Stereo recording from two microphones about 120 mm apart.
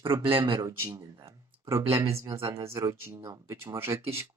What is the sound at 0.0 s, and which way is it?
Speech, 45° right (ahead or behind).